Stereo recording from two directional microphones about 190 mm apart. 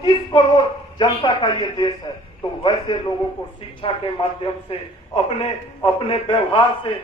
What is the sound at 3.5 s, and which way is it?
A man's voice, 30° left (ahead or behind).